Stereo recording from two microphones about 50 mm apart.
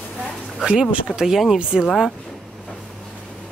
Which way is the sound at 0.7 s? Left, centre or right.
Centre.